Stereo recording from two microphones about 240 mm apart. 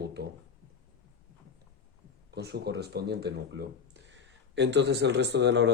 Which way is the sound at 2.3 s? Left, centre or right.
Right.